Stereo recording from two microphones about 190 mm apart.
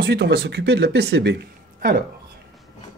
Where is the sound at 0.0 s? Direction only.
60° right (ahead or behind).